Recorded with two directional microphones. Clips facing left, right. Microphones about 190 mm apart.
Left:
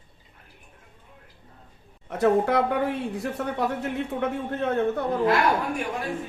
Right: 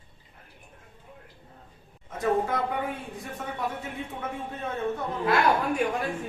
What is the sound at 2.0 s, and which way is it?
A woman's voice, 70° left (ahead or behind).